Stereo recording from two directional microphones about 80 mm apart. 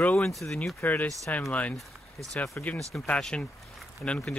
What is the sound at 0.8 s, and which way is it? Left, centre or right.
Speech, left.